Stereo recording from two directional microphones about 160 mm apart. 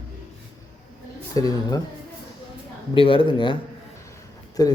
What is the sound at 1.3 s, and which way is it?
Speech, 25° left (ahead or behind).